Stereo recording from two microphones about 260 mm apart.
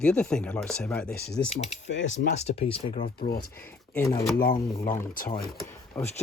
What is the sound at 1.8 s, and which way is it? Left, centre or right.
Speech, left.